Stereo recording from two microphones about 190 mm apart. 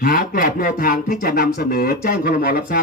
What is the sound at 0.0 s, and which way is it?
Speech, 50° left (ahead or behind).